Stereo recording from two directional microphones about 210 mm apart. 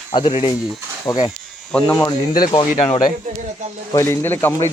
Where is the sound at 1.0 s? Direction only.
20° left (ahead or behind).